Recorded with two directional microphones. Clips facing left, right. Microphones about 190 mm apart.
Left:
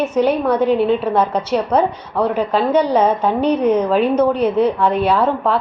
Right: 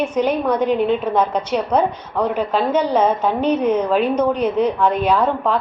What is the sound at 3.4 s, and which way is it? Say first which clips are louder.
Speech: left 2 dB; 10° right (ahead or behind).